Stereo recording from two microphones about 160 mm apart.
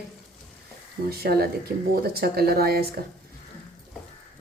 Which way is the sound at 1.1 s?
75° right (ahead or behind).